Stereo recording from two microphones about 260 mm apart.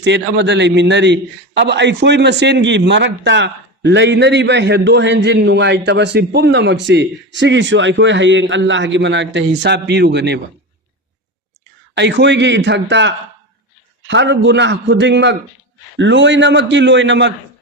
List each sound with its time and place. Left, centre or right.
0.0 s a man's voice: right
11.9 s a man's voice: right